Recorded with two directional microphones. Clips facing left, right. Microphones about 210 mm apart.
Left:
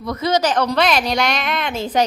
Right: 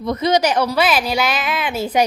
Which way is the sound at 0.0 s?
20° right (ahead or behind).